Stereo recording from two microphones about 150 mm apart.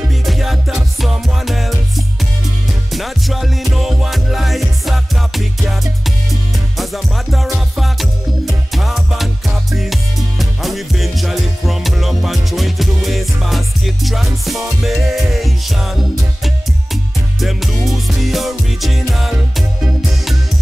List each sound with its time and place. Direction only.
0.1 s music: centre (ahead or behind)